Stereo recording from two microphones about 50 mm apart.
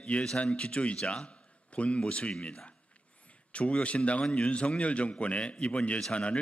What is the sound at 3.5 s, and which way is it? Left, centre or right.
A man's voice, left.